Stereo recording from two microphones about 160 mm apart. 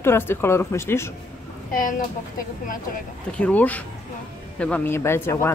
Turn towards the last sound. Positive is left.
turn(degrees=15)  # may be behind; listen again after turning